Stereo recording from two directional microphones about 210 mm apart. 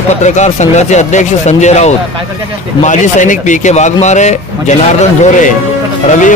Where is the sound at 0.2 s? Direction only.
35° left (ahead or behind).